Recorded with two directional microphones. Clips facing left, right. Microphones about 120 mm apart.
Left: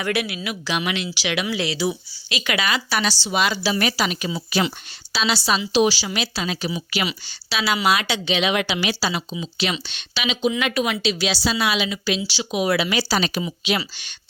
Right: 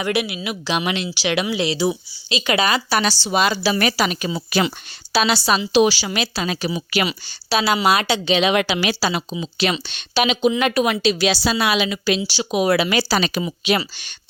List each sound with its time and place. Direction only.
0.0 s speech: 20° right (ahead or behind); by 3.6 s 40° right (ahead or behind)
3.6 s a woman's voice: 60° right (ahead or behind)
5.1 s a woman's voice: 55° right (ahead or behind); by 8.5 s 40° right (ahead or behind)
8.5 s a woman's voice: 55° right (ahead or behind); by 13.4 s 80° right
13.4 s a woman's voice: 50° right (ahead or behind)